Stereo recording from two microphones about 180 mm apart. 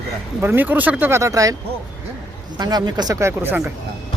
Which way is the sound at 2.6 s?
20° right (ahead or behind).